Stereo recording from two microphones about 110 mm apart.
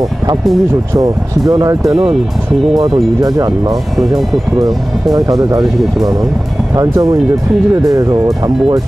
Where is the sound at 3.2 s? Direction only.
35° right (ahead or behind).